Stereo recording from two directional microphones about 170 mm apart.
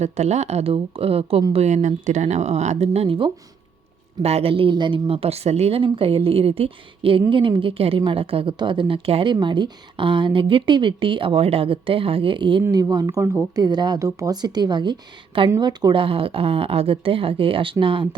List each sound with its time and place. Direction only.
0.0 s speech: 40° right (ahead or behind)